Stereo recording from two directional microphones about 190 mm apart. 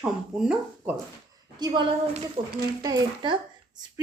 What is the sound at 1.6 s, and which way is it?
Speech, 20° right (ahead or behind).